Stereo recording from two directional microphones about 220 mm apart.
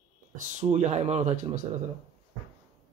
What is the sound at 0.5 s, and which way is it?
Speech, 30° right (ahead or behind).